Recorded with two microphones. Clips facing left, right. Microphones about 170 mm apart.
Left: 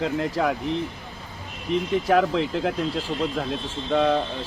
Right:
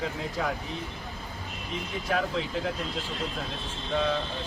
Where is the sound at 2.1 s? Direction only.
70° left (ahead or behind).